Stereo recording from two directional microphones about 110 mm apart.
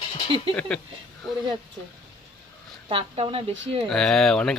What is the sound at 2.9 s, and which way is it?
Speech, 55° right (ahead or behind).